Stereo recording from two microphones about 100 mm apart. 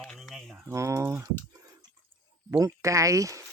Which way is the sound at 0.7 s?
30° right (ahead or behind).